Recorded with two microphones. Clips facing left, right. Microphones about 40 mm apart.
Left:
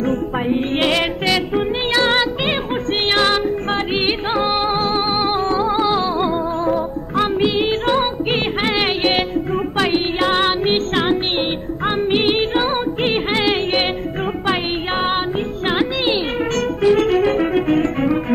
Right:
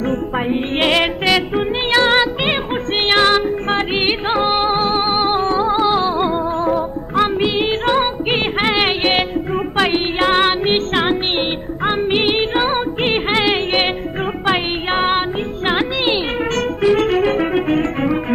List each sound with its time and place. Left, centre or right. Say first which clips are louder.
0.5 s music: right 1 dB; right
14.9 s music: right 4 dB; right